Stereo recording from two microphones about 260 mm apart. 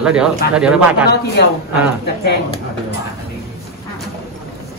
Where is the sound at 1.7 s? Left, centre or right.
Centre.